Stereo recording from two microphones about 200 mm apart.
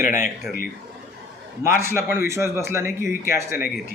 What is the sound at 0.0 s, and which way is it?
Speech, 40° left (ahead or behind).